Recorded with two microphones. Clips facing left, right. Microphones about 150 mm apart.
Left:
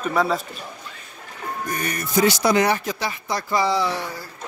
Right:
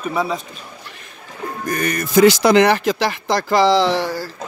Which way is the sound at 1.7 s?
90° right.